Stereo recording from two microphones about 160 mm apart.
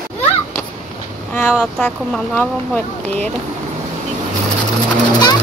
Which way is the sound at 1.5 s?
10° left (ahead or behind).